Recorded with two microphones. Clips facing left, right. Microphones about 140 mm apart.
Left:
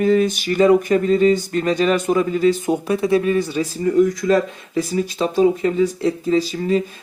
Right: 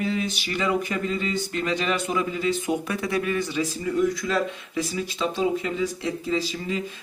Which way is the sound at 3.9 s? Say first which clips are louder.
Left 10 dB; 50° left (ahead or behind).